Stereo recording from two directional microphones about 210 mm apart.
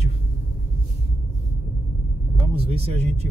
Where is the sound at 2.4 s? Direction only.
25° right (ahead or behind).